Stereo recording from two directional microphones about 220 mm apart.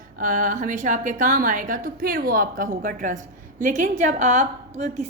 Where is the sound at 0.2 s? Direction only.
35° right (ahead or behind).